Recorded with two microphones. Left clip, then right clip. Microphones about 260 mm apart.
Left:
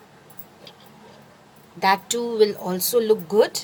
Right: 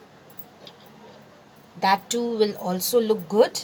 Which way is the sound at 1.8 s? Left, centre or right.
Left.